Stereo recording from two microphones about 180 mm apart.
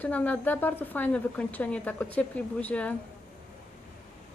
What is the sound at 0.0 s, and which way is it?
A woman's voice, 10° left (ahead or behind).